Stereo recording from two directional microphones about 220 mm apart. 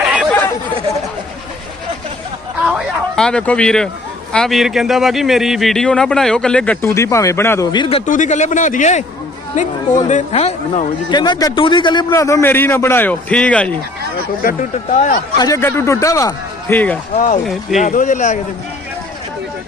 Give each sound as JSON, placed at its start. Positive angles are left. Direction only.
{"t": 0.0, "sound": "chatter", "side_deg": 0}
{"t": 2.6, "sound": "a sound", "side_deg": 0}
{"t": 4.3, "sound": "a man's voice", "side_deg": 0}
{"t": 14.4, "sound": "speech", "side_deg": 40}
{"t": 15.4, "sound": "speech", "side_deg": 15}
{"t": 17.2, "sound": "speech", "side_deg": 35}
{"t": 17.4, "sound": "a man's voice", "side_deg": 0}
{"t": 17.7, "sound": "speech", "side_deg": 35}